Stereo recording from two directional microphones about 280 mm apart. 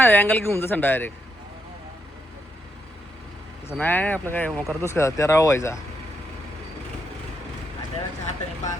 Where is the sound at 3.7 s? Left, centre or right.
Centre.